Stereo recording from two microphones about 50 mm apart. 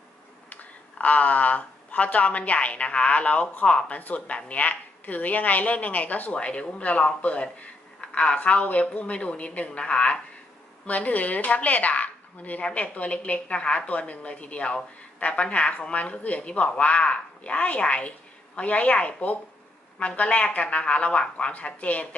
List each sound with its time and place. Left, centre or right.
0.5 s a woman's voice: left